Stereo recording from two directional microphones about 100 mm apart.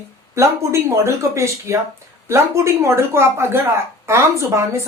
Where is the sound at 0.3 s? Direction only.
30° right (ahead or behind).